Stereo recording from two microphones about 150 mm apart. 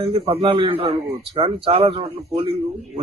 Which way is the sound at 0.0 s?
40° right (ahead or behind).